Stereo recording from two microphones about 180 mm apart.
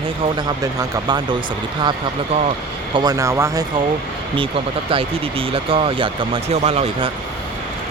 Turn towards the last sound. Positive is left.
turn(degrees=-35)  # may be behind; listen again after turning